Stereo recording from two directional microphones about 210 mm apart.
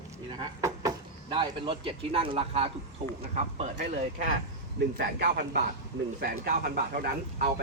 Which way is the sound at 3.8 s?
35° right (ahead or behind).